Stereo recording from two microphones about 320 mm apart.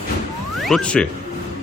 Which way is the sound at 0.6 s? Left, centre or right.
Centre.